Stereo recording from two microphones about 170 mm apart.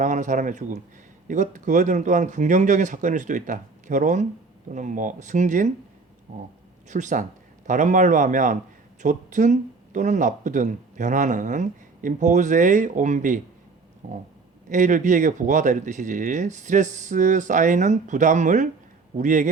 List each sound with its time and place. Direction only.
0.0 s speech: 45° right (ahead or behind)
6.8 s speech: 45° right (ahead or behind)